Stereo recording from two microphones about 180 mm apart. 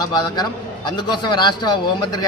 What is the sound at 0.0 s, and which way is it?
A man's voice, 20° left (ahead or behind).